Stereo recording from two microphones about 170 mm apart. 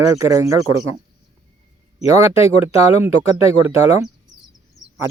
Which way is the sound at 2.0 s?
20° right (ahead or behind).